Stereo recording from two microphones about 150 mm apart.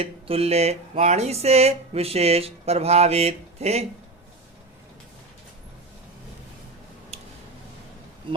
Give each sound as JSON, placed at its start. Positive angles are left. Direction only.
{"t": 0.0, "sound": "music", "side_deg": -40}
{"t": 7.1, "sound": "tick-tock", "side_deg": -45}